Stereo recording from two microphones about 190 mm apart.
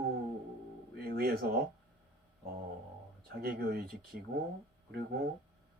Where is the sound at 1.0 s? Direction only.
55° right (ahead or behind).